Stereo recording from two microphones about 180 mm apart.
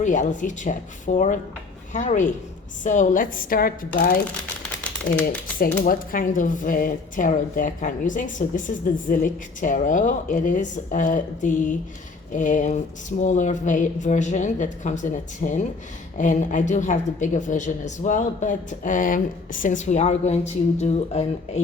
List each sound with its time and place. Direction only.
0.0 s speech: 45° left (ahead or behind)
5.2 s speech: 50° left (ahead or behind); by 21.6 s 35° left (ahead or behind)